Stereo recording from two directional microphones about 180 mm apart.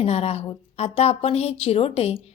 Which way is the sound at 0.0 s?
35° left (ahead or behind).